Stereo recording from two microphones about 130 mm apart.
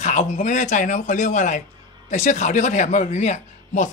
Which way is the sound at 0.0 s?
65° left (ahead or behind).